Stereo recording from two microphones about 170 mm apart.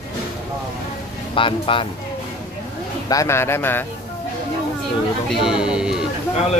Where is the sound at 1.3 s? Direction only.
30° left (ahead or behind).